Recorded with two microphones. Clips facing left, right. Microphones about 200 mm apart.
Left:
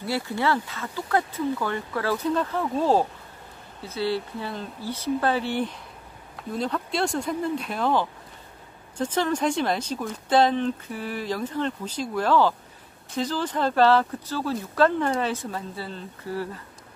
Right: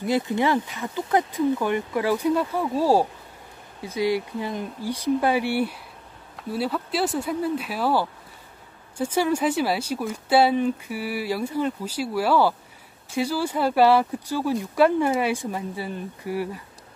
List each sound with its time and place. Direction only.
0.0 s speech: 20° right (ahead or behind)